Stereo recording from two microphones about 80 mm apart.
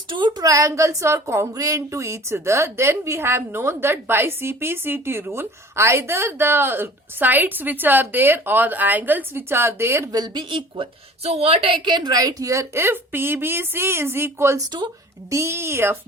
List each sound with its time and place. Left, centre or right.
0.1 s a woman's voice: right
0.4 s a woman's voice: right
10.1 s speech: right
11.9 s a woman's voice: right